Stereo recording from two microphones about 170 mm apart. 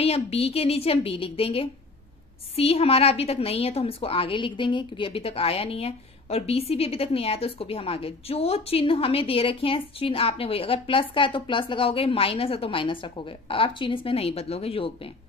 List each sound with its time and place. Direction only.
0.0 s a woman's voice: 35° left (ahead or behind)